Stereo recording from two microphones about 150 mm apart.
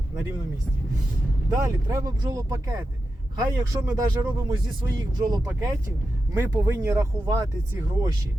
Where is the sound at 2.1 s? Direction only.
25° right (ahead or behind).